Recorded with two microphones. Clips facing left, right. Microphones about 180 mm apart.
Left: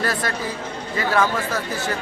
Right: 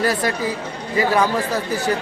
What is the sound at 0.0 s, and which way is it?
Speech, 15° right (ahead or behind).